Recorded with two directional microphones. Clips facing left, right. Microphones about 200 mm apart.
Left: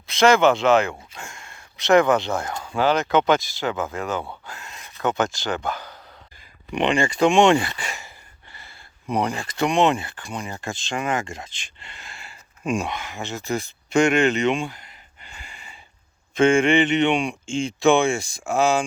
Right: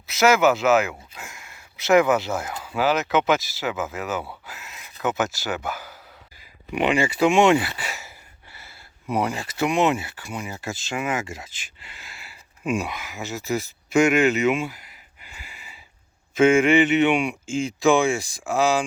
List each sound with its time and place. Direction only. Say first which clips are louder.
0.1 s speech: left 2 dB; 5° right (ahead or behind)